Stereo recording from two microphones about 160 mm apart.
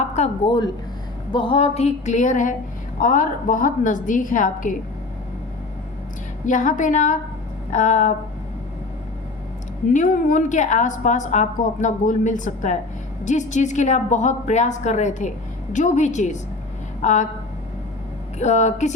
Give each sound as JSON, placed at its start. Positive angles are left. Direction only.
{"t": 0.0, "sound": "a sound", "side_deg": 45}
{"t": 1.3, "sound": "a woman's voice", "side_deg": 30}
{"t": 6.4, "sound": "a woman's voice", "side_deg": 50}
{"t": 9.9, "sound": "a woman's voice", "side_deg": 55}
{"t": 18.3, "sound": "a woman's voice", "side_deg": 45}